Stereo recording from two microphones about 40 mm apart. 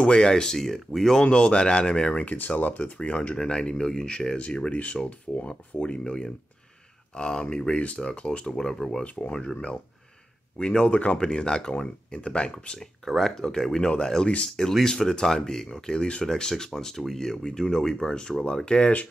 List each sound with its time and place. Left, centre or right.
0.0 s speech: left; by 1.2 s centre
1.3 s speech: left
3.0 s speech: left
3.3 s speech: left
4.6 s speech: left
5.8 s speech: left
8.5 s speech: centre
9.0 s speech: left
10.6 s speech: left
13.3 s speech: centre